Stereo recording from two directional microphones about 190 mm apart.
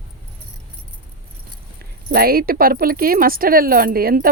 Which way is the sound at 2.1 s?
50° right (ahead or behind).